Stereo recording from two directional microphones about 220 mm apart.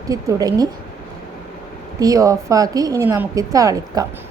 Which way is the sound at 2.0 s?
15° right (ahead or behind).